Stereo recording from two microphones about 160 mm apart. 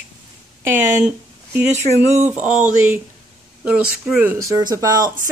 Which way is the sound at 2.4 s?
50° right (ahead or behind).